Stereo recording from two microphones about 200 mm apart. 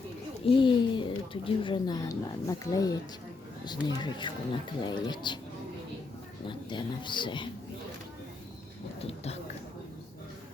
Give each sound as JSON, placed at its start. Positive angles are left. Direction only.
{"t": 0.4, "sound": "speech", "side_deg": 25}
{"t": 6.5, "sound": "speech", "side_deg": 25}
{"t": 9.0, "sound": "a sound", "side_deg": 30}